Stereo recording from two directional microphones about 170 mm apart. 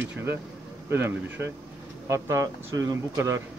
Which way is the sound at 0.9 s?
10° right (ahead or behind).